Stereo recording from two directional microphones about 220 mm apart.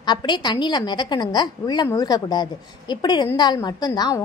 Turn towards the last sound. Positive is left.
turn(degrees=20)  # may be behind; listen again after turning